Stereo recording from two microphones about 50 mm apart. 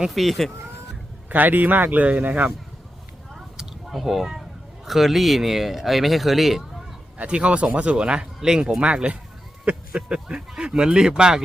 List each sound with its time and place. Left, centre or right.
0.1 s speech: centre
1.3 s speech: right
3.3 s a sound: centre
4.9 s speech: centre
7.2 s speech: right